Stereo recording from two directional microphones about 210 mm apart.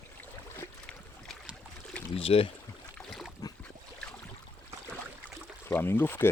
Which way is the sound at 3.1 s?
Centre (ahead or behind).